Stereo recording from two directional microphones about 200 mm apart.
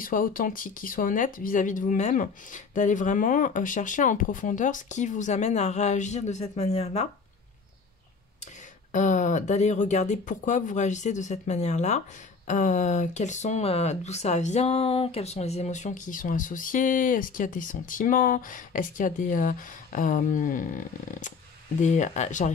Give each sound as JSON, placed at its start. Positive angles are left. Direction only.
{"t": 0.0, "sound": "speech", "side_deg": 45}
{"t": 8.9, "sound": "speech", "side_deg": 40}